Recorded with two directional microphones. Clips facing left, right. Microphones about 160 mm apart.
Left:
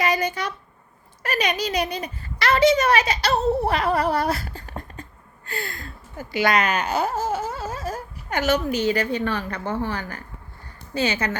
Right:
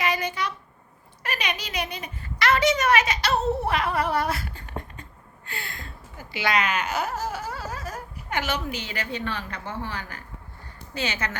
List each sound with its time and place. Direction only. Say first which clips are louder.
0.0 s a sound: left 3 dB; 40° left (ahead or behind)
1.2 s a woman's voice: left 7 dB; 40° left (ahead or behind)
8.4 s a woman's voice: left 8 dB; 40° left (ahead or behind)
10.9 s a woman's voice: left 6 dB; 35° left (ahead or behind)